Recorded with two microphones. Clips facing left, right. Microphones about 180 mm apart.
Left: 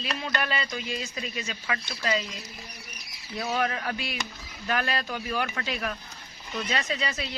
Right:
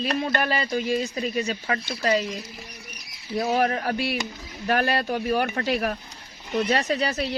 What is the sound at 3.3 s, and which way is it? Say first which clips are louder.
Speech: right 6 dB; 30° right (ahead or behind).